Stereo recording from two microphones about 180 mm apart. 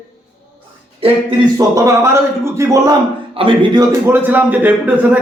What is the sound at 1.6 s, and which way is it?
A man's voice, 15° right (ahead or behind).